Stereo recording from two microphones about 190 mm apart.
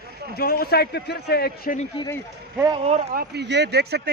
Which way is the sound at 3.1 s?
55° right (ahead or behind).